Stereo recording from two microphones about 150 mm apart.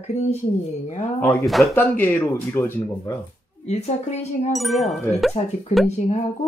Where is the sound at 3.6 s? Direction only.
50° left (ahead or behind).